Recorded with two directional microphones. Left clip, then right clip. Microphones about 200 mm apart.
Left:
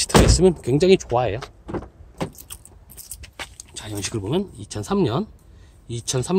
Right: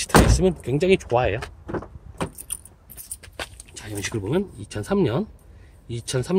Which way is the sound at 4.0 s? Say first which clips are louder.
Even; 25° left (ahead or behind).